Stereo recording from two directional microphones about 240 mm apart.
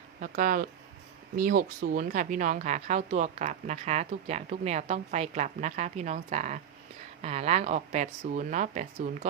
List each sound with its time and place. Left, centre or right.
0.2 s speech: right